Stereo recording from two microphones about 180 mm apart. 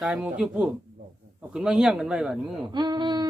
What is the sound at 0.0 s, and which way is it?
Speech, 5° right (ahead or behind).